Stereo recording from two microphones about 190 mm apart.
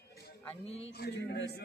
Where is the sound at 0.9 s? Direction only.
60° left (ahead or behind).